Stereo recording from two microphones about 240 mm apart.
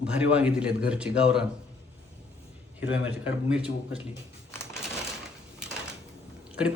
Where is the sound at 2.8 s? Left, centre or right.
Left.